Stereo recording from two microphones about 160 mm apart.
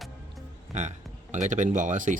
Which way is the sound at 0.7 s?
45° right (ahead or behind).